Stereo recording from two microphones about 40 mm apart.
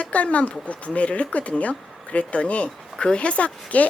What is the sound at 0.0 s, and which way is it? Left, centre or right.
A woman's voice, left.